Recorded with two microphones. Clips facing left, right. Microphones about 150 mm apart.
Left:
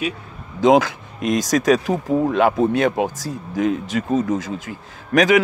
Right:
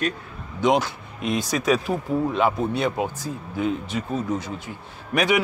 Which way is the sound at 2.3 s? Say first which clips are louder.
Left 5 dB; 65° left (ahead or behind).